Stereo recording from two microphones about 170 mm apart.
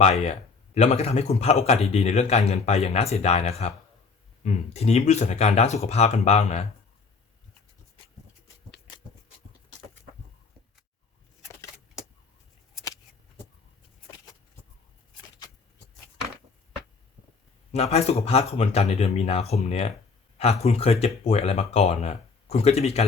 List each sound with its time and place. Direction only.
0.0 s speech: 40° left (ahead or behind)
17.7 s speech: 40° left (ahead or behind)